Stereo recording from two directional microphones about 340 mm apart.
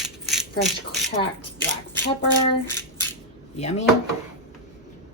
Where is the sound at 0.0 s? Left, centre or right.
Centre.